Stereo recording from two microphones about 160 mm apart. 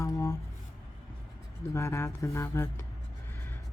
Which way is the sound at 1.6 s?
20° left (ahead or behind).